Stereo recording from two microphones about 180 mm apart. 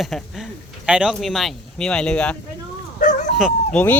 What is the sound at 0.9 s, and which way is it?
Speech, 5° right (ahead or behind).